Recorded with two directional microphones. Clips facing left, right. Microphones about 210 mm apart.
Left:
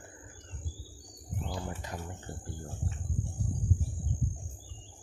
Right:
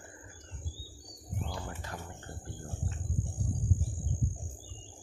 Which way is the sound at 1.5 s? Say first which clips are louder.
Left 5 dB; 15° left (ahead or behind).